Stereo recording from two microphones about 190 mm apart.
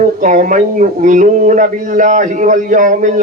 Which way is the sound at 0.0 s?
40° right (ahead or behind).